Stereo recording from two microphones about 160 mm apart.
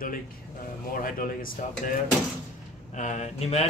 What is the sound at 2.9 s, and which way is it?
Speech, 50° left (ahead or behind).